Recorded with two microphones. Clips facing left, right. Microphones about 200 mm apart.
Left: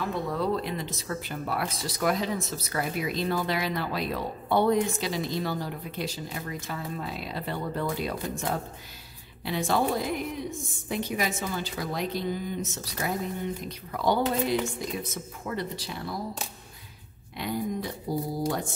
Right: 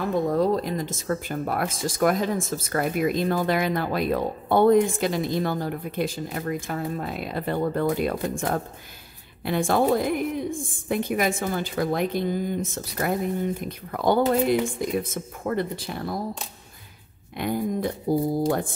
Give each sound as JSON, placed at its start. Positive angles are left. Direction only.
{"t": 0.1, "sound": "speech", "side_deg": -45}
{"t": 17.4, "sound": "speech", "side_deg": -50}